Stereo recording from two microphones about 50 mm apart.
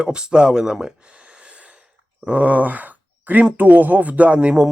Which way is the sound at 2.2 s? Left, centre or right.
Right.